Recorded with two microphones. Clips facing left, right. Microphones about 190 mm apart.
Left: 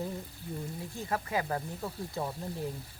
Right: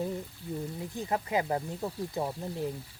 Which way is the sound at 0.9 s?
20° right (ahead or behind).